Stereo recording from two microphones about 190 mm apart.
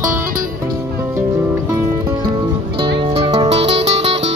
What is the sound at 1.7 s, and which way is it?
Music, 20° right (ahead or behind).